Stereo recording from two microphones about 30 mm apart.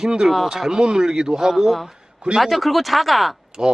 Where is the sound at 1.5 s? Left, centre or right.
Centre.